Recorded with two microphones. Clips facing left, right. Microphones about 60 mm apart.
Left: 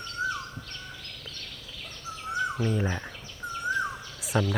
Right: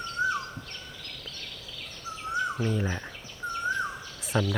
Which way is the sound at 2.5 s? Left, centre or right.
Centre.